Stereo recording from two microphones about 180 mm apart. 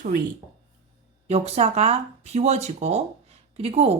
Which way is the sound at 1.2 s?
35° right (ahead or behind).